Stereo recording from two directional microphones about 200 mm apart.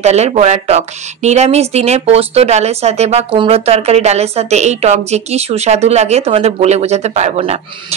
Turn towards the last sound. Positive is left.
turn(degrees=-30)  # may be behind; listen again after turning